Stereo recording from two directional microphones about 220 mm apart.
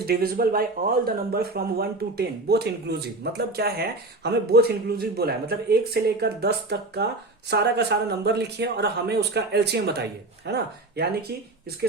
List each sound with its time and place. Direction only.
0.0 s speech: 45° right (ahead or behind)